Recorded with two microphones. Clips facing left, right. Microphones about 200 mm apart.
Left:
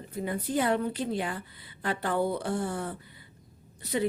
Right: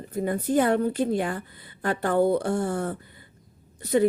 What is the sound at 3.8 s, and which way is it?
Speech, 45° right (ahead or behind).